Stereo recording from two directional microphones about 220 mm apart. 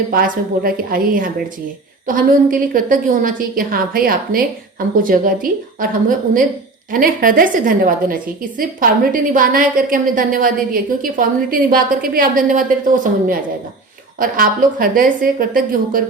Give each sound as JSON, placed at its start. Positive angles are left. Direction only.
{"t": 0.1, "sound": "a woman's voice", "side_deg": -40}